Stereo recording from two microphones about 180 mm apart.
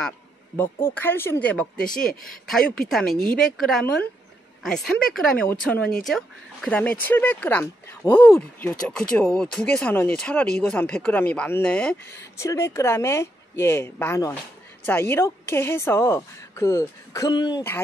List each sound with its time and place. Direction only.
0.6 s a woman's voice: 10° left (ahead or behind)